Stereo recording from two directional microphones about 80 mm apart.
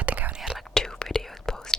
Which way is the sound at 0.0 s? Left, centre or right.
Centre.